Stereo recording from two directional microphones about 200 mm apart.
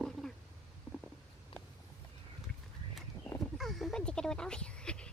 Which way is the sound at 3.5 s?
Centre (ahead or behind).